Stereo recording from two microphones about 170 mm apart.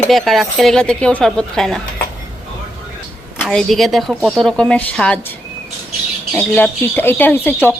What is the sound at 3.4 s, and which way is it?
Speech, centre (ahead or behind).